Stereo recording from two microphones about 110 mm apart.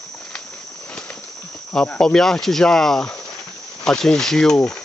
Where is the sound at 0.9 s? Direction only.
10° left (ahead or behind).